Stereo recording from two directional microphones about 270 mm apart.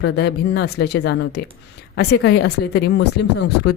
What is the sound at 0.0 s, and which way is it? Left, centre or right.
Speech, left.